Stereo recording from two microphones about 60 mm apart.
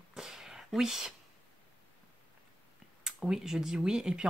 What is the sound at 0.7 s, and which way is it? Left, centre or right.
Speech, centre.